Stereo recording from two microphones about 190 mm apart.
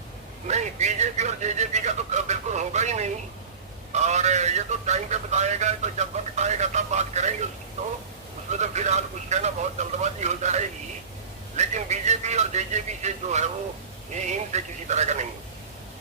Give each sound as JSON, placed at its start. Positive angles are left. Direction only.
{"t": 0.4, "sound": "a man's voice", "side_deg": -35}
{"t": 14.5, "sound": "a man's voice", "side_deg": -35}